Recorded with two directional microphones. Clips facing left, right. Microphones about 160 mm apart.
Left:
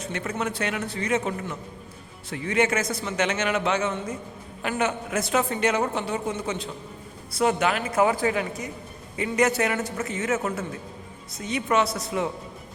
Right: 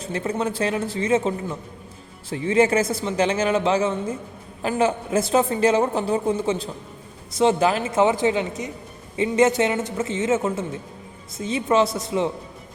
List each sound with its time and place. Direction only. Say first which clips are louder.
0.0 s a woman's voice: right 4 dB; 30° right (ahead or behind)